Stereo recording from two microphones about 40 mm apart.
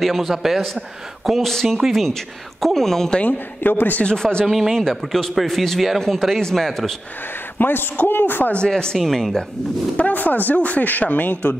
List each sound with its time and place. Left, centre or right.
0.0 s a man's voice: centre
1.5 s a man's voice: centre
3.6 s a man's voice: left
4.0 s speech: left
4.5 s a man's voice: centre
7.5 s a man's voice: left
8.6 s speech: centre
8.9 s a man's voice: centre
9.9 s speech: left